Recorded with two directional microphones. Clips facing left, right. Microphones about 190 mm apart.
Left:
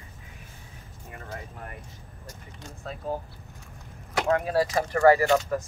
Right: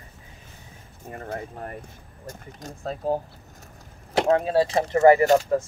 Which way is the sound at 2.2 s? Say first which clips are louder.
Right 7 dB; 40° right (ahead or behind).